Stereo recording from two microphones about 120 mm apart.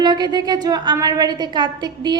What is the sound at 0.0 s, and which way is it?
A woman's voice, 35° right (ahead or behind).